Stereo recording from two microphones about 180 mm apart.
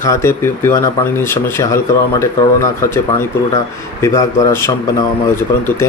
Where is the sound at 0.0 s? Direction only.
15° left (ahead or behind).